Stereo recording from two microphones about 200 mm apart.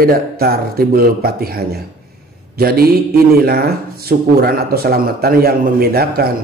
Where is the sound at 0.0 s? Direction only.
50° right (ahead or behind).